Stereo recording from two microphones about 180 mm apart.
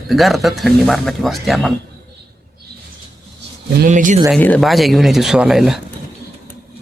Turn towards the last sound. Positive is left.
turn(degrees=0)  # may be behind; listen again after turning